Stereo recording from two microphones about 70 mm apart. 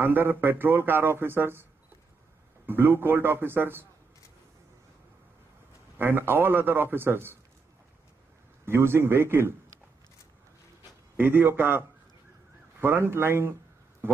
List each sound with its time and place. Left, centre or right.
0.0 s speech: right
5.9 s speech: right
8.6 s speech: right
10.8 s a sound: right
12.8 s speech: right